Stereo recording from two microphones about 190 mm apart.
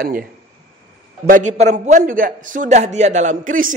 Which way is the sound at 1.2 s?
40° right (ahead or behind).